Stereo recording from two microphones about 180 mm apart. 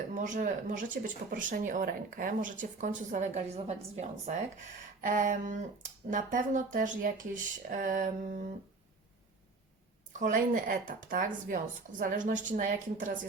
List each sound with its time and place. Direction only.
0.1 s speech: 50° right (ahead or behind)
10.1 s speech: 45° right (ahead or behind)